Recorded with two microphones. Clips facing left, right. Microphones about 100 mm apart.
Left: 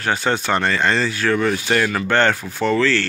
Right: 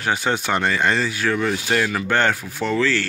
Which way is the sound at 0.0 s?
10° right (ahead or behind).